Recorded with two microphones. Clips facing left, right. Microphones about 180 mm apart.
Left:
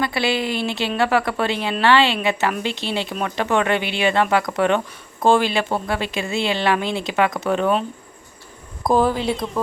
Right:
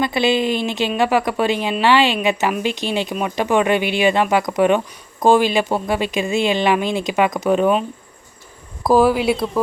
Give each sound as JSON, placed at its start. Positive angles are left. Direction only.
{"t": 0.0, "sound": "a woman's voice", "side_deg": -20}
{"t": 8.9, "sound": "a woman's voice", "side_deg": -10}